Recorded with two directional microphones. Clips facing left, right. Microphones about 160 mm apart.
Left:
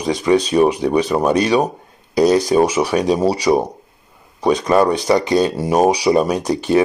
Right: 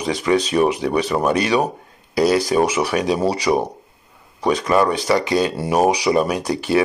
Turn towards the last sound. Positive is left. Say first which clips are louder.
# left 3 dB
turn(degrees=20)  # may be behind; listen again after turning